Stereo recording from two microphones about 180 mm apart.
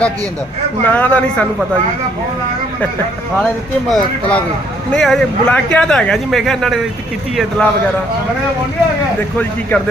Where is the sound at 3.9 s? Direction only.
Centre (ahead or behind).